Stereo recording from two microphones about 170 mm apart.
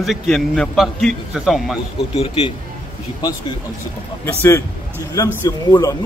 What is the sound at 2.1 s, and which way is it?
Speech, 35° left (ahead or behind).